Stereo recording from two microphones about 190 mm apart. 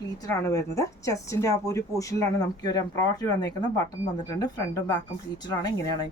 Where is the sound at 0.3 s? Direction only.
15° left (ahead or behind).